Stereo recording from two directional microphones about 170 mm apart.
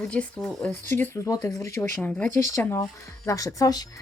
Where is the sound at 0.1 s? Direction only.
5° left (ahead or behind).